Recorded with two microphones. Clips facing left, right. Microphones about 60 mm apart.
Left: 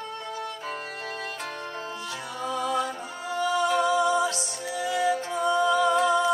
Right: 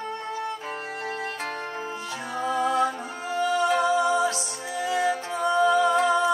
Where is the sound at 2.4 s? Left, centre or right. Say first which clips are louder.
Right 4 dB; right.